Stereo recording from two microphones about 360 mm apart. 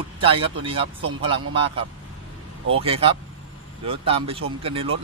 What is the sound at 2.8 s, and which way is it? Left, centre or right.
Speech, centre.